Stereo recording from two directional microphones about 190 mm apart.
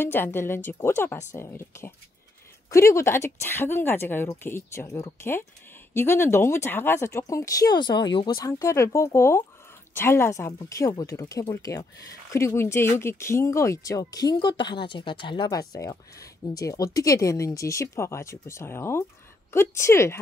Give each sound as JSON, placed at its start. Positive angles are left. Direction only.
{"t": 0.0, "sound": "speech", "side_deg": 10}